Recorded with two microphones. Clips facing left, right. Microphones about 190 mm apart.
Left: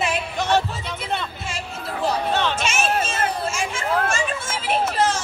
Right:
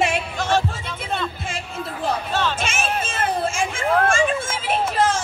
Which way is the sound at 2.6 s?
55° right (ahead or behind).